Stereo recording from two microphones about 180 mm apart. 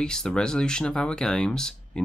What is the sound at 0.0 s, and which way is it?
Speech, 5° left (ahead or behind).